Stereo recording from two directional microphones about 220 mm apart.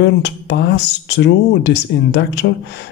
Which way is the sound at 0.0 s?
50° left (ahead or behind).